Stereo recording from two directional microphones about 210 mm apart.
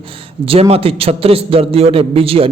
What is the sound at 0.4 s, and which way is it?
A man's voice, 25° right (ahead or behind).